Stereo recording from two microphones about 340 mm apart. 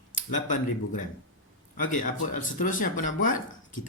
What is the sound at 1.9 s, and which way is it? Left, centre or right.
Speech, left.